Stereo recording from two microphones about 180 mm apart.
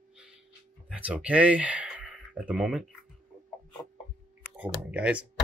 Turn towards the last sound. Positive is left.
turn(degrees=-5)  # may be behind; listen again after turning